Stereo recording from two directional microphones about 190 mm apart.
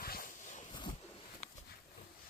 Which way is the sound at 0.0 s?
50° left (ahead or behind).